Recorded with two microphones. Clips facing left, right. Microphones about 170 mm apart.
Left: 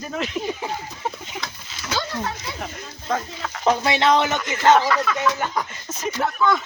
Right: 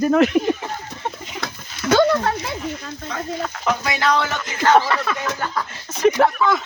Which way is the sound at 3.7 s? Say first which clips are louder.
Left 3 dB; 30° left (ahead or behind).